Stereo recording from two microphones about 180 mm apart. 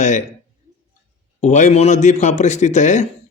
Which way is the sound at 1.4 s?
40° left (ahead or behind).